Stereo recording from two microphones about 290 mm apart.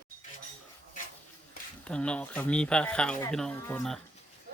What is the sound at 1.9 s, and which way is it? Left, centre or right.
Speech, centre.